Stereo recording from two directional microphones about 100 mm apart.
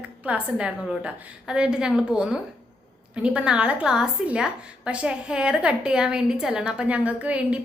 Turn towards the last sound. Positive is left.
turn(degrees=-15)  # may be behind; listen again after turning